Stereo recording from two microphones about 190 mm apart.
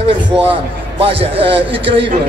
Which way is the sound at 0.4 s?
30° right (ahead or behind).